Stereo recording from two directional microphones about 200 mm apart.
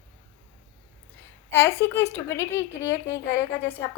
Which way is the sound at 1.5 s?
15° left (ahead or behind).